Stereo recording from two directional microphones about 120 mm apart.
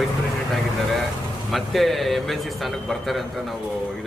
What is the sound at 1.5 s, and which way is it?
Speech, centre (ahead or behind).